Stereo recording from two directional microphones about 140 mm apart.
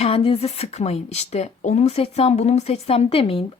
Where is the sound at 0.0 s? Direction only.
40° left (ahead or behind).